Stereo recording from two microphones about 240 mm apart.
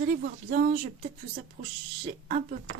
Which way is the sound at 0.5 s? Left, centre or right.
Right.